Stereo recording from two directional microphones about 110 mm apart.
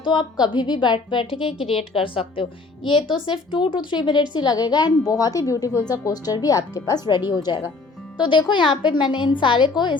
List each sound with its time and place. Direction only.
0.0 s a woman's voice: 40° left (ahead or behind)